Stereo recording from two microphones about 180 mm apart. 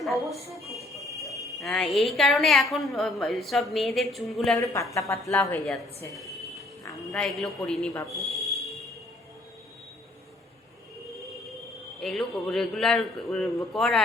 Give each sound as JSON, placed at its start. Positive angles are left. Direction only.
{"t": 0.0, "sound": "a woman's voice", "side_deg": 0}
{"t": 4.6, "sound": "a woman's voice", "side_deg": 15}
{"t": 8.3, "sound": "a sound", "side_deg": 0}
{"t": 11.9, "sound": "a woman's voice", "side_deg": 0}